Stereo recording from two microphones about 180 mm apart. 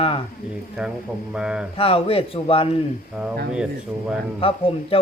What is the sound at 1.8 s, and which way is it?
Speech, 30° left (ahead or behind).